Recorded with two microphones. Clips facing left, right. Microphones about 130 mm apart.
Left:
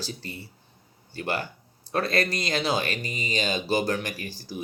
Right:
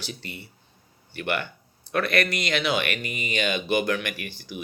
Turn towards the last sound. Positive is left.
turn(degrees=35)  # may be behind; listen again after turning